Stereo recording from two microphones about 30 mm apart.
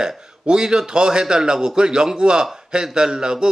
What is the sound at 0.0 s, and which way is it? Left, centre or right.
Speech, right.